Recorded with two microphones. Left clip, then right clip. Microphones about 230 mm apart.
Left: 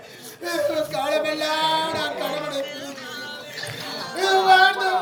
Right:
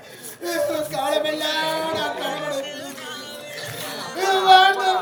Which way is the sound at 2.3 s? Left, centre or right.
Right.